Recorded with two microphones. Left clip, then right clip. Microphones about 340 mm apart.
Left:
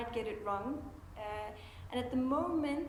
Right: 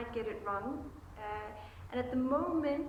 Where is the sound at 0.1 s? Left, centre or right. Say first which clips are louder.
Right 2 dB; centre.